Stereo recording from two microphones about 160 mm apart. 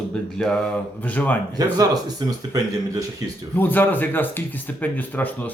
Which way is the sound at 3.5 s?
10° left (ahead or behind).